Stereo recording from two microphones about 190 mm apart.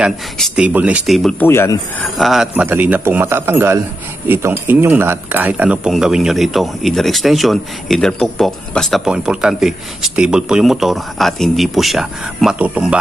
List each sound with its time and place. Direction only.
0.0 s speech: 5° right (ahead or behind)
1.5 s speech: 15° left (ahead or behind)
2.1 s a man's voice: centre (ahead or behind)